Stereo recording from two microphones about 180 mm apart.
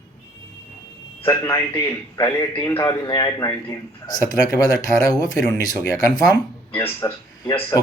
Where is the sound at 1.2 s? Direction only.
15° left (ahead or behind).